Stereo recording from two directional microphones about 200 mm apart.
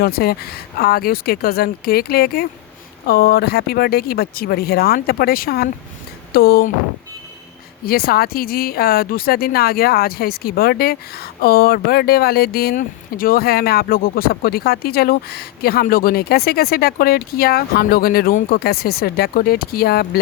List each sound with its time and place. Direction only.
0.0 s speech: 50° left (ahead or behind)
7.9 s speech: 50° left (ahead or behind)